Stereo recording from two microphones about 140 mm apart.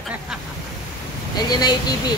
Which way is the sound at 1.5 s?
30° left (ahead or behind).